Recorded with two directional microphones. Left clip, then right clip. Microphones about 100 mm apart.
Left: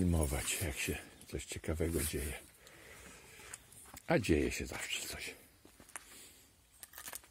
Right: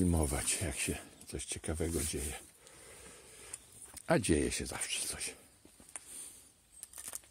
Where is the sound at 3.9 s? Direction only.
35° right (ahead or behind).